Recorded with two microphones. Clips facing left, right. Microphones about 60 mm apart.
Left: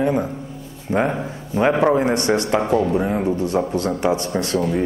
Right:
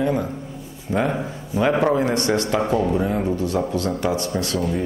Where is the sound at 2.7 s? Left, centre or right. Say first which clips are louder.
Left 3 dB; centre.